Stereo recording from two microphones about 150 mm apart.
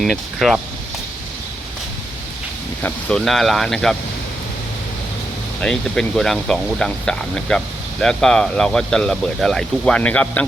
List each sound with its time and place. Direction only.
0.0 s speech: centre (ahead or behind)
2.8 s speech: 5° left (ahead or behind)
5.5 s speech: 5° left (ahead or behind)